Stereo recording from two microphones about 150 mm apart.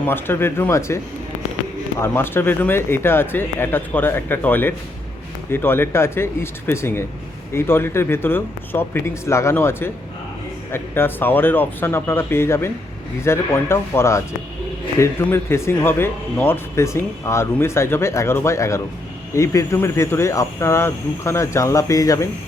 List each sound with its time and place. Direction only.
0.0 s speech: 15° left (ahead or behind)
2.0 s speech: 15° left (ahead or behind)